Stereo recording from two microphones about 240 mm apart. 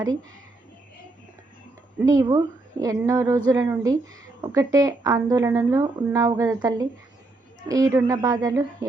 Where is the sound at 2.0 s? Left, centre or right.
Centre.